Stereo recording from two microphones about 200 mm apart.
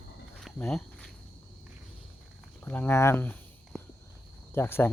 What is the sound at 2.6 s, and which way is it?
Speech, 10° left (ahead or behind).